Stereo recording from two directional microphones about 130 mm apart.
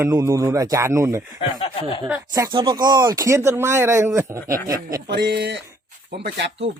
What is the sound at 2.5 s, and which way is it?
Speech, 35° right (ahead or behind).